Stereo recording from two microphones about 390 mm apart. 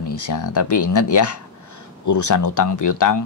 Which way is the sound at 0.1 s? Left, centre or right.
Left.